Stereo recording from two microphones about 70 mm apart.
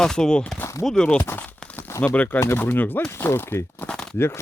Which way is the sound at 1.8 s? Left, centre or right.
Left.